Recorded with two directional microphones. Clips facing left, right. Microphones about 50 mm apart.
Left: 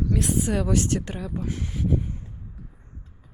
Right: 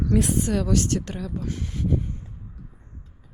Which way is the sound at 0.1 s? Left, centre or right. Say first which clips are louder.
Right 4 dB; centre.